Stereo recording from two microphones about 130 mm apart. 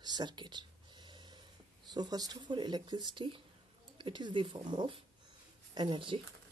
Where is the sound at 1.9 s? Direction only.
30° right (ahead or behind).